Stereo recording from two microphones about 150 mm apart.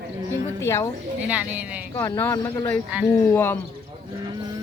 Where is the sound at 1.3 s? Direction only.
10° right (ahead or behind).